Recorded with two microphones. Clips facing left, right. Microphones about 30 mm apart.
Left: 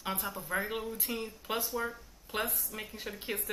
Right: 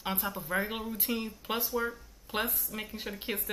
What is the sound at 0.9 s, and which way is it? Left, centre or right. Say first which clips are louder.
Speech: right 3 dB; right.